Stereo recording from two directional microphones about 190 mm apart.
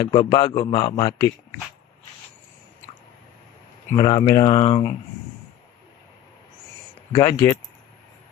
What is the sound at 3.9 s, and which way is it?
Speech, 20° left (ahead or behind).